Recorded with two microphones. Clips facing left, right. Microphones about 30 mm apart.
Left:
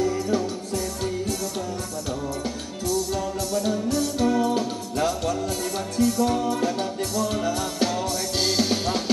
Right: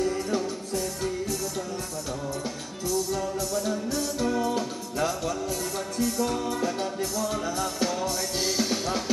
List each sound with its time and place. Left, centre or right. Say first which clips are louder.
3.5 s music: left 7 dB; left
7.5 s music: left 3 dB; left